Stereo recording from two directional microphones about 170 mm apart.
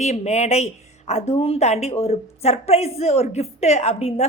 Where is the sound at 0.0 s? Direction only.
40° left (ahead or behind).